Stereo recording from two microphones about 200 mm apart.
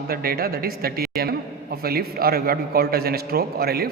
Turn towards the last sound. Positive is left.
turn(degrees=-50)  # may be behind; listen again after turning